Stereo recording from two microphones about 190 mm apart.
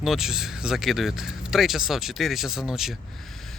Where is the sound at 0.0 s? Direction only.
Centre (ahead or behind).